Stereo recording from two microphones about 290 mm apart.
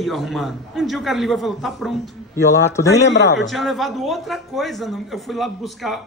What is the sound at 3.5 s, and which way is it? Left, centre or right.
A man's voice, centre.